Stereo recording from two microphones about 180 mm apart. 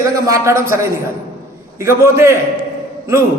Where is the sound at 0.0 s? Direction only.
15° right (ahead or behind).